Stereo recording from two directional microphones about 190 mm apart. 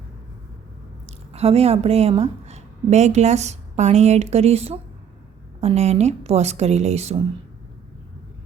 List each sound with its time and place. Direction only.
1.0 s speech: 30° right (ahead or behind)